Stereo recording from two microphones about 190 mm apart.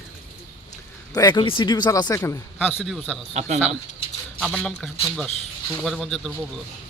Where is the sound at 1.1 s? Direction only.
20° left (ahead or behind).